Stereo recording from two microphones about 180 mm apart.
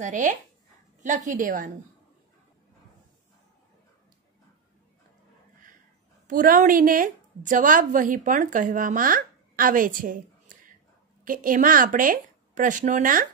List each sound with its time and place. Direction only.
0.0 s a woman's voice: 45° right (ahead or behind)
6.2 s a woman's voice: 50° right (ahead or behind)
11.2 s a woman's voice: 50° right (ahead or behind)